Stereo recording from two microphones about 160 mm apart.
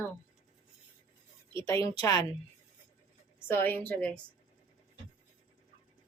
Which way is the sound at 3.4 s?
15° left (ahead or behind).